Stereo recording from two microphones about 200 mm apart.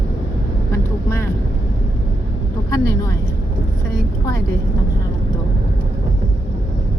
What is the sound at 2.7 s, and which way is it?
Vehicle, 15° left (ahead or behind).